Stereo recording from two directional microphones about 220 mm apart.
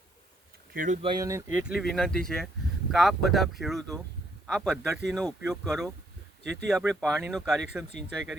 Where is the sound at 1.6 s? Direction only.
Centre (ahead or behind).